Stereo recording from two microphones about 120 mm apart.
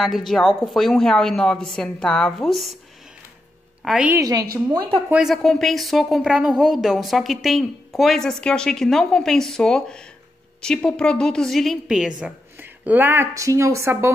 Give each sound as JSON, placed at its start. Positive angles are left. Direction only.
{"t": 0.0, "sound": "a woman's voice", "side_deg": 0}
{"t": 3.8, "sound": "a woman's voice", "side_deg": -5}
{"t": 4.1, "sound": "a woman's voice", "side_deg": -25}
{"t": 5.1, "sound": "a woman's voice", "side_deg": 0}
{"t": 12.5, "sound": "speech", "side_deg": -15}